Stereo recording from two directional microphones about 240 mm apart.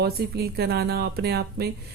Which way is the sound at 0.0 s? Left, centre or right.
Right.